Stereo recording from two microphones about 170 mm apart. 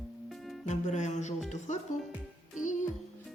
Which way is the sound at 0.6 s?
45° left (ahead or behind).